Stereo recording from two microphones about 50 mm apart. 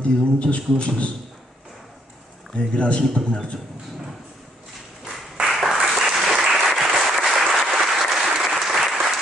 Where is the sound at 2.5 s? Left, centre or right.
Left.